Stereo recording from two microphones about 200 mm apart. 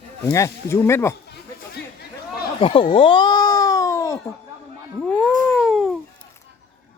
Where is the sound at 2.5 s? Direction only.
25° left (ahead or behind).